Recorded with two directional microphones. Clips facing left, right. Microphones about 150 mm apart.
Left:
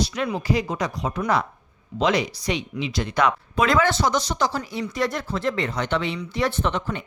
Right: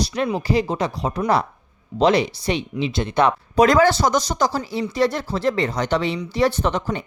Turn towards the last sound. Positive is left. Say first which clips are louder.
# right 3 dB
turn(degrees=-35)  # may be behind; listen again after turning